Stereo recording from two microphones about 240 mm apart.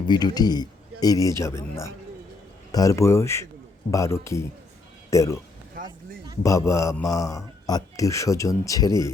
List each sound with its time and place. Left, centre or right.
0.1 s a man's voice: centre
6.4 s a man's voice: centre